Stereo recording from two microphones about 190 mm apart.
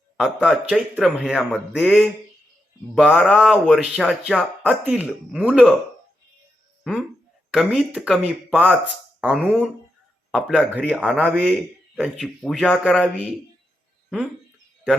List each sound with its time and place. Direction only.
0.2 s speech: centre (ahead or behind)
7.5 s speech: centre (ahead or behind)